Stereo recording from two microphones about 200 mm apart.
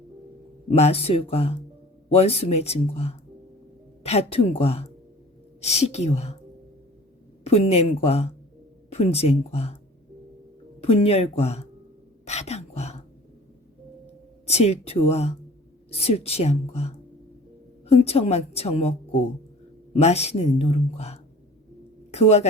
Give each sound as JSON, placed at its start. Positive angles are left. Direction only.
{"t": 0.7, "sound": "speech", "side_deg": 30}
{"t": 7.4, "sound": "speech", "side_deg": 30}
{"t": 10.8, "sound": "speech", "side_deg": 30}
{"t": 12.2, "sound": "a sound", "side_deg": 35}
{"t": 14.4, "sound": "speech", "side_deg": 30}